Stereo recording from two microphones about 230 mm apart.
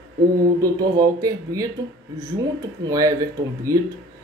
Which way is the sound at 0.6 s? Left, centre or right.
Centre.